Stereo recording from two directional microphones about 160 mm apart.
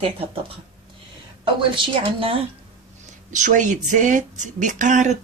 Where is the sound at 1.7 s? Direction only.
30° right (ahead or behind).